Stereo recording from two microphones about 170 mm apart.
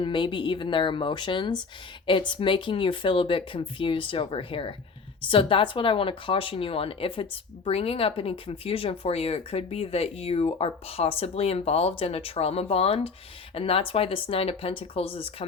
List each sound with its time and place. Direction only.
0.0 s speech: 30° left (ahead or behind)